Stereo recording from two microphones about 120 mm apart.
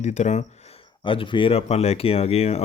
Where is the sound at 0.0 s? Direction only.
75° left (ahead or behind).